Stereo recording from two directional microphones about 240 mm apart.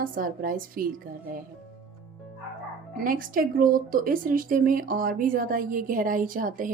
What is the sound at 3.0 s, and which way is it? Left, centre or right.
A woman's voice, right.